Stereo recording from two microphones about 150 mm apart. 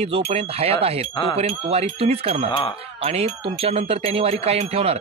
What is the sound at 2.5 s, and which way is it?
Speech, 40° left (ahead or behind).